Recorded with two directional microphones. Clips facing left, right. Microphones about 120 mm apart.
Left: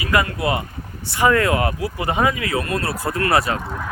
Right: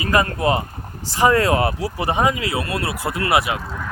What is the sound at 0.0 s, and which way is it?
Speech, 35° right (ahead or behind).